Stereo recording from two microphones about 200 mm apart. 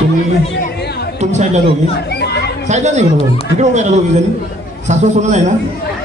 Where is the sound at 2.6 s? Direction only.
35° right (ahead or behind).